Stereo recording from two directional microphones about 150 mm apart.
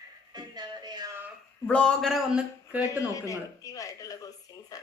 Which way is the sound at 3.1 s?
20° left (ahead or behind).